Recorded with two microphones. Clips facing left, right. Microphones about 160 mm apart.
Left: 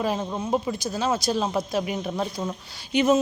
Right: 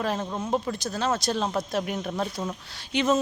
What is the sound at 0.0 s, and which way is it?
Speech, 10° left (ahead or behind).